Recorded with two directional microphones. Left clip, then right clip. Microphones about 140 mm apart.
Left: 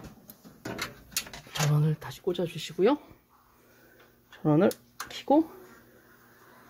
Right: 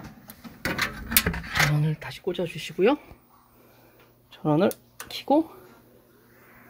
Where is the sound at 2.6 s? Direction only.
10° right (ahead or behind).